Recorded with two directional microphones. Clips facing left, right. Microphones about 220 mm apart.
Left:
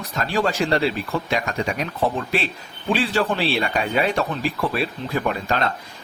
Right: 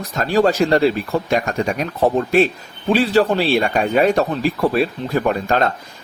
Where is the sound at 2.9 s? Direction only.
40° right (ahead or behind).